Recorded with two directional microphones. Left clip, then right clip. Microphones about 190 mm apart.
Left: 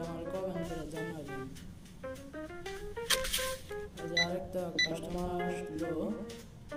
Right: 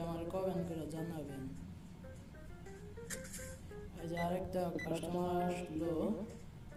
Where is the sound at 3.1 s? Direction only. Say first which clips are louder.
Left 18 dB; 45° left (ahead or behind).